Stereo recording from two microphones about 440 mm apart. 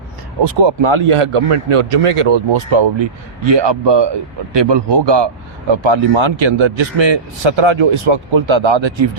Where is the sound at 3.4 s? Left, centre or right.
Right.